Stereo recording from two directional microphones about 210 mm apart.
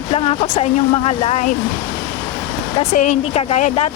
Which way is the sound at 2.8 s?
35° left (ahead or behind).